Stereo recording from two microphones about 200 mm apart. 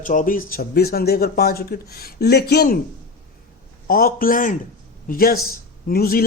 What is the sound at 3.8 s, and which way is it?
A man's voice, 45° left (ahead or behind).